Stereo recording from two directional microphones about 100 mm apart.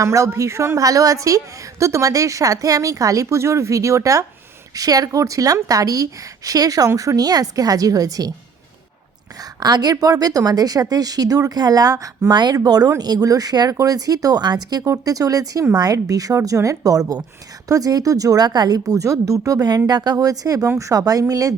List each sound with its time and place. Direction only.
0.0 s speech: 30° right (ahead or behind)
9.4 s speech: 45° right (ahead or behind)